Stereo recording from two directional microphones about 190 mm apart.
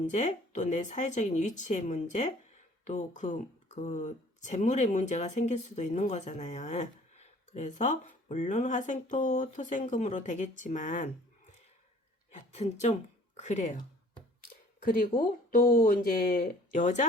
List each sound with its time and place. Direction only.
0.1 s speech: 40° left (ahead or behind)
12.3 s speech: 40° left (ahead or behind)
14.8 s speech: 50° left (ahead or behind)